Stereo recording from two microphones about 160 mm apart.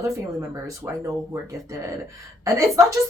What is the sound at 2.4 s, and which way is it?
Speech, 20° right (ahead or behind).